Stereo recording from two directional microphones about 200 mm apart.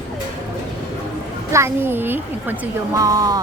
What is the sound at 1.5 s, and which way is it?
A child's voice, 10° right (ahead or behind).